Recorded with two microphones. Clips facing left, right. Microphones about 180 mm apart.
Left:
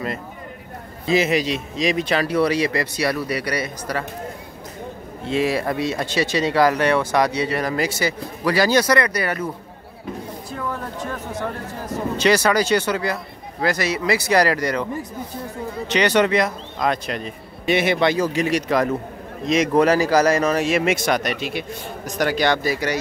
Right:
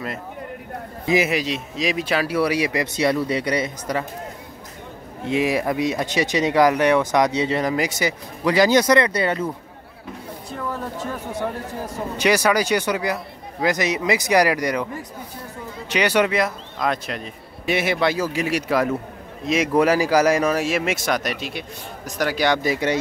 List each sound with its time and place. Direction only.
1.0 s a man's voice: 15° right (ahead or behind)
1.3 s speech: centre (ahead or behind); by 4.0 s 20° right (ahead or behind)
5.2 s speech: 15° right (ahead or behind)
10.5 s speech: 5° right (ahead or behind)
15.9 s speech: 10° right (ahead or behind)